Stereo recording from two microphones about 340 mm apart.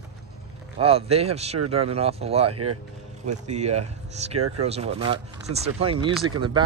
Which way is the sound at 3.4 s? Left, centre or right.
Centre.